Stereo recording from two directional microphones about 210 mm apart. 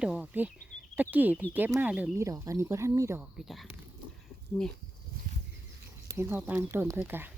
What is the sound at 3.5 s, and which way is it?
Speech, centre (ahead or behind).